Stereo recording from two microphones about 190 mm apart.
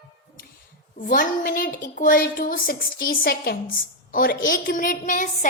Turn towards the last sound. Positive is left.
turn(degrees=45)  # may be behind; listen again after turning